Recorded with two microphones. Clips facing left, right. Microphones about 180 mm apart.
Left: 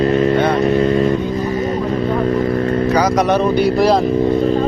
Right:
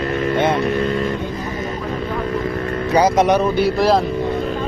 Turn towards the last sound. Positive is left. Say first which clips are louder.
# left 2 dB
turn(degrees=0)  # may be behind; listen again after turning